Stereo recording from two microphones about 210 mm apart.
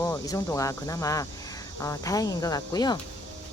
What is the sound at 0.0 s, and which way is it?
Speech, 15° left (ahead or behind).